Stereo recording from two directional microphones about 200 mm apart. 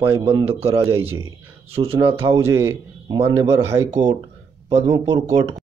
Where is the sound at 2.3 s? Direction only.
15° right (ahead or behind).